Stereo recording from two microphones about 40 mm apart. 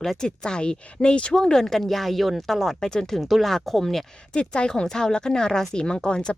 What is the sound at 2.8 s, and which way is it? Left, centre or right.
Speech, centre.